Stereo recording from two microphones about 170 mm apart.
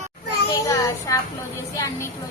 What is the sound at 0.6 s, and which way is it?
Child singing, 20° left (ahead or behind).